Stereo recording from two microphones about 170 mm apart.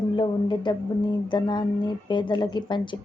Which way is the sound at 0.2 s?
25° left (ahead or behind).